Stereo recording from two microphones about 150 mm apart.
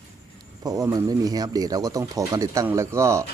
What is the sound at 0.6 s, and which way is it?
Speech, 25° right (ahead or behind).